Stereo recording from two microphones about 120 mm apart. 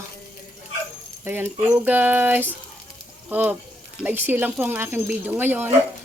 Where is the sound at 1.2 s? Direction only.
15° right (ahead or behind).